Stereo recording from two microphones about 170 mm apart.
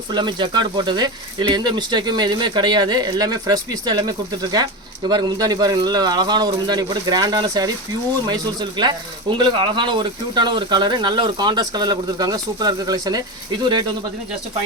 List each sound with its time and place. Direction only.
0.1 s speech: 25° right (ahead or behind)
8.8 s speech: 25° right (ahead or behind)